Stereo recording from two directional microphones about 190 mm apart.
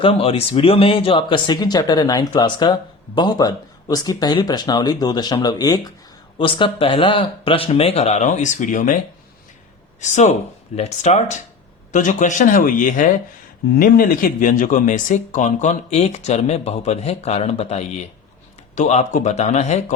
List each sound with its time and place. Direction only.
0.0 s speech: 30° left (ahead or behind)
10.0 s speech: 40° left (ahead or behind)